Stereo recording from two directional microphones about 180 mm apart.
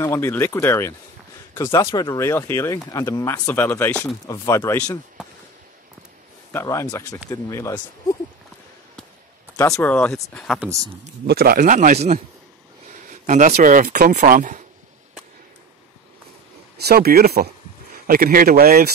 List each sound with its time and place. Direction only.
0.0 s speech: 15° left (ahead or behind)
4.3 s speech: 20° left (ahead or behind)
6.5 s speech: 15° left (ahead or behind)
9.8 s speech: 10° left (ahead or behind)
10.6 s speech: 15° right (ahead or behind)
11.2 s a man's voice: 55° right (ahead or behind)
16.8 s a man's voice: 60° right (ahead or behind)